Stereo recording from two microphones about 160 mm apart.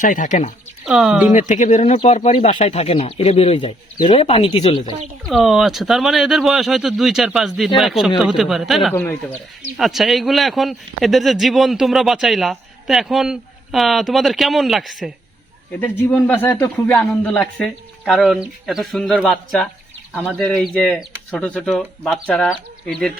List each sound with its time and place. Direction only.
0.0 s speech: 55° left (ahead or behind)
0.9 s speech: 5° right (ahead or behind)
1.3 s speech: 50° left (ahead or behind); by 4.8 s 30° left (ahead or behind)
5.2 s speech: centre (ahead or behind)
8.9 s speech: 10° left (ahead or behind)
9.7 s speech: centre (ahead or behind)
15.8 s speech: 10° left (ahead or behind)